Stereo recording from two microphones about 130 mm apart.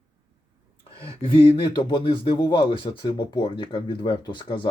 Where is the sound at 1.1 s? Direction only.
45° left (ahead or behind).